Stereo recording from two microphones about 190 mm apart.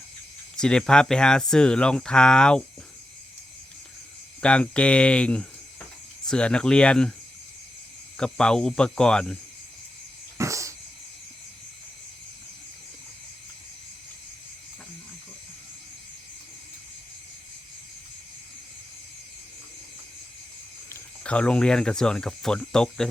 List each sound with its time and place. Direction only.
0.5 s speech: 5° left (ahead or behind)
4.4 s speech: 5° left (ahead or behind)
8.2 s speech: 5° left (ahead or behind)
10.3 s a sound: 15° right (ahead or behind)
20.9 s speech: 5° left (ahead or behind)